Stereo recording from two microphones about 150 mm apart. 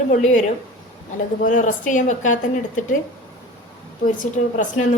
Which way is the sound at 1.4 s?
60° left (ahead or behind).